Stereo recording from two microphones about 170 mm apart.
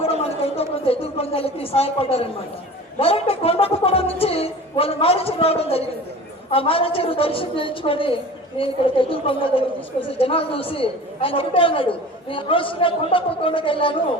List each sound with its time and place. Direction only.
0.0 s a woman's voice: 35° left (ahead or behind)